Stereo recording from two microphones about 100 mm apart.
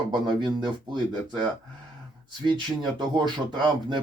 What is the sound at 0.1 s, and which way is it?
Speech, 50° right (ahead or behind).